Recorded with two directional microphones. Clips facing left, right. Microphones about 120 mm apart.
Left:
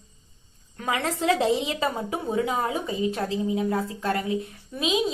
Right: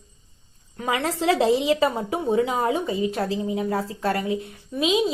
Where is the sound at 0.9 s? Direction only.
30° right (ahead or behind).